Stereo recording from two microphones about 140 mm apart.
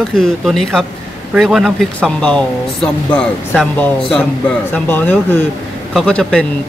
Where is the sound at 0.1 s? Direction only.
5° left (ahead or behind).